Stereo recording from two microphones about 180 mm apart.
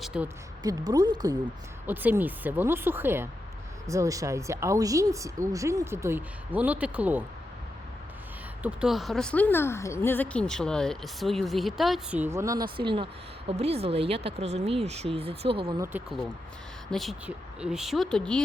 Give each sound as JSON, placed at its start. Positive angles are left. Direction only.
{"t": 0.0, "sound": "a sound", "side_deg": -5}
{"t": 0.6, "sound": "speech", "side_deg": -20}
{"t": 1.9, "sound": "speech", "side_deg": -10}
{"t": 8.6, "sound": "speech", "side_deg": -5}
{"t": 12.7, "sound": "speech", "side_deg": -30}
{"t": 15.8, "sound": "speech", "side_deg": -10}